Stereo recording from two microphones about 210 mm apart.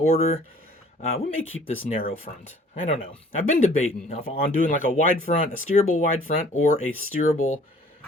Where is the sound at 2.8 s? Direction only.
30° left (ahead or behind).